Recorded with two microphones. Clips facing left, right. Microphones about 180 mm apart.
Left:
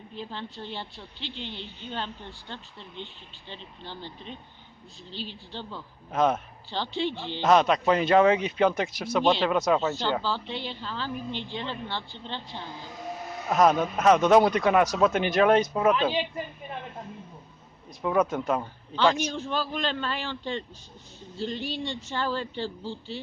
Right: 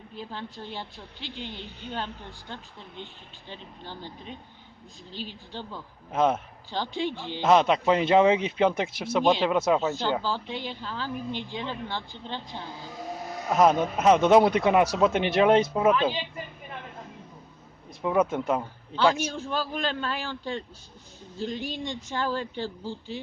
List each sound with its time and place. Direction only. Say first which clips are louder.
0.2 s a woman's voice: even; 10° right (ahead or behind)
3.5 s a woman's voice: even; 10° right (ahead or behind)
6.1 s speech: even; 25° right (ahead or behind)
6.7 s a woman's voice: even; 10° right (ahead or behind)
7.4 s speech: even; 25° right (ahead or behind)
9.2 s a woman's voice: right 1 dB; 15° right (ahead or behind)
18.0 s a woman's voice: right 1 dB; 15° right (ahead or behind)